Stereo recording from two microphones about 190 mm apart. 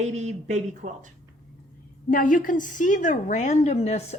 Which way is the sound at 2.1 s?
45° left (ahead or behind).